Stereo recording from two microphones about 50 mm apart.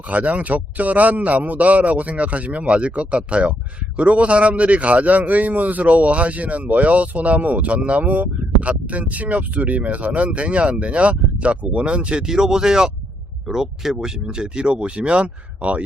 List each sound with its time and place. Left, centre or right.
0.1 s a man's voice: right
12.2 s a man's voice: centre